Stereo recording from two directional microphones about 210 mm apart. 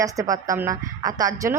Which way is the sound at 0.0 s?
15° right (ahead or behind).